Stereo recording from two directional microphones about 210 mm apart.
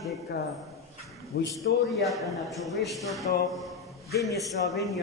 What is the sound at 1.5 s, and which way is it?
A man's voice, centre (ahead or behind).